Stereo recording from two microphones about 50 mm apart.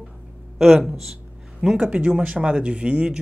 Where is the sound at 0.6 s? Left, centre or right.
Centre.